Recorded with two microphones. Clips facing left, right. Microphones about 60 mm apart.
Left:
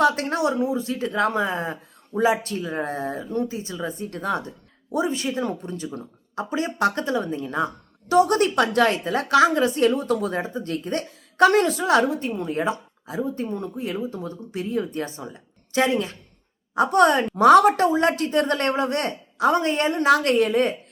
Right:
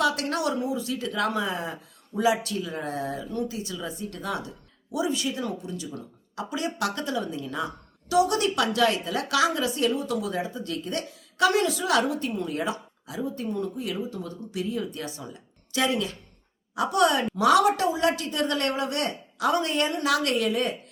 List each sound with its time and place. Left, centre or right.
0.0 s a woman's voice: left